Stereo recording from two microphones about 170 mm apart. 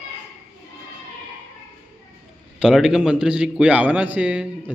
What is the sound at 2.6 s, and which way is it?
A man's voice, 5° right (ahead or behind).